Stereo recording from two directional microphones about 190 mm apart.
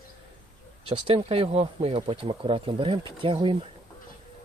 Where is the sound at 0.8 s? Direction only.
30° right (ahead or behind).